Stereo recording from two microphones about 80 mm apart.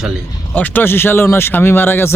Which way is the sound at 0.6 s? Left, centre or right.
Left.